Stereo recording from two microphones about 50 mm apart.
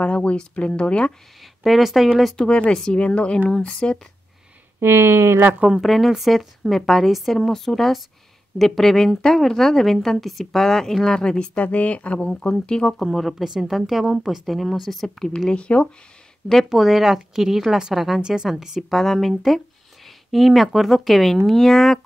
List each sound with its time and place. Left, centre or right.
0.0 s speech: left
1.4 s speech: centre
2.3 s speech: centre
4.7 s speech: right
5.8 s a woman's voice: centre
13.0 s a woman's voice: centre
15.1 s speech: centre
15.5 s speech: left
16.6 s a woman's voice: centre
18.8 s a woman's voice: centre